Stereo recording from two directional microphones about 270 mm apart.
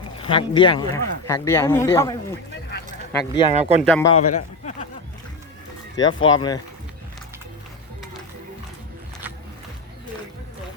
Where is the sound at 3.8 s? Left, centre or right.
Centre.